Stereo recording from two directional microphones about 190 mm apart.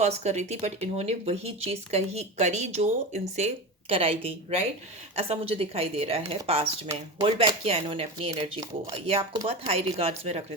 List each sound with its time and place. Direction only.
0.0 s speech: 35° right (ahead or behind)